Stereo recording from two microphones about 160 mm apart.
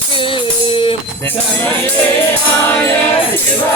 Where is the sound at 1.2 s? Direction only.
15° left (ahead or behind).